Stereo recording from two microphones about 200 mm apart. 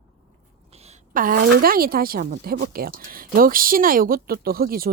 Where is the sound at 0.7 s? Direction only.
35° right (ahead or behind).